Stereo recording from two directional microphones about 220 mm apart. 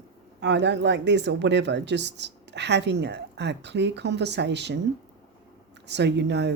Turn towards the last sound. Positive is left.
turn(degrees=-50)  # may be behind; listen again after turning